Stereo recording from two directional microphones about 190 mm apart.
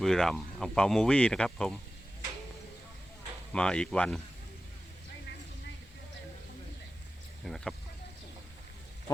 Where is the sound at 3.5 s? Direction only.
5° left (ahead or behind).